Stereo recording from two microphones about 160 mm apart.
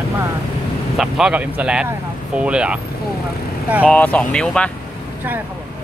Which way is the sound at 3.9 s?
10° left (ahead or behind).